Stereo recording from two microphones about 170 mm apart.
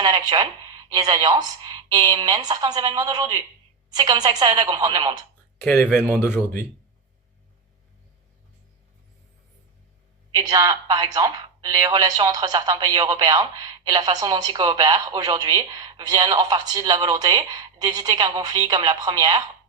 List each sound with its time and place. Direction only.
0.0 s a woman's voice: 25° right (ahead or behind)
5.6 s speech: 10° left (ahead or behind)
10.3 s a woman's voice: 25° right (ahead or behind)